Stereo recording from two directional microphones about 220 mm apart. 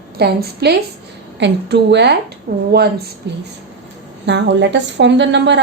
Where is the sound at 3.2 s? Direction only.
50° right (ahead or behind).